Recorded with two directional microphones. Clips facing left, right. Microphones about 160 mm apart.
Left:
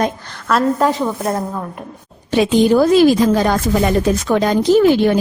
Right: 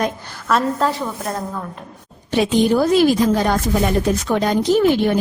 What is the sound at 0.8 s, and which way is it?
Speech, 20° left (ahead or behind).